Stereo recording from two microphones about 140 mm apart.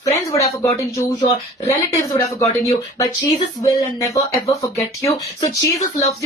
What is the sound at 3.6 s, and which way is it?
Speech, 25° left (ahead or behind).